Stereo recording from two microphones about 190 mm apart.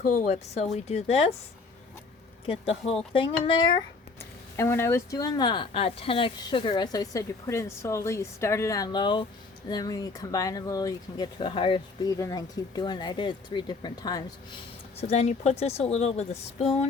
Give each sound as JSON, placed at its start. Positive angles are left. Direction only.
{"t": 0.0, "sound": "a woman's voice", "side_deg": 35}
{"t": 2.9, "sound": "speech", "side_deg": 30}
{"t": 4.2, "sound": "speech", "side_deg": 15}
{"t": 14.9, "sound": "a woman's voice", "side_deg": 35}